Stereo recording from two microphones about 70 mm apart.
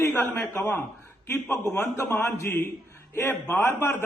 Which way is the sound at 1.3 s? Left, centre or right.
Left.